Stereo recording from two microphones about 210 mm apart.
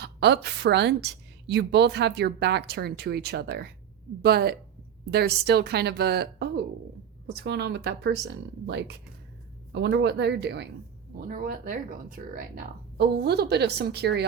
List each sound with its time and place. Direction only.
0.0 s a woman's voice: 55° right (ahead or behind)
11.2 s a woman's voice: 45° right (ahead or behind)